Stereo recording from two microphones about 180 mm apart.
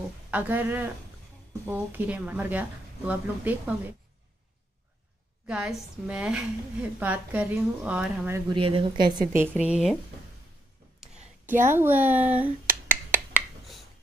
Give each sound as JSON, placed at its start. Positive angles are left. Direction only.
{"t": 0.3, "sound": "a woman's voice", "side_deg": -10}
{"t": 5.5, "sound": "a woman's voice", "side_deg": -5}
{"t": 8.5, "sound": "speech", "side_deg": -30}
{"t": 9.6, "sound": "speech", "side_deg": -5}
{"t": 11.0, "sound": "finger snapping", "side_deg": -10}